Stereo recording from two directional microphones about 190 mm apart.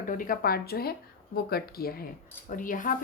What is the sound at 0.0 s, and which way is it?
A woman's voice, 45° left (ahead or behind).